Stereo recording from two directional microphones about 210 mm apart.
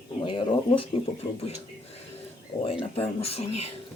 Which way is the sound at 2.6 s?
25° left (ahead or behind).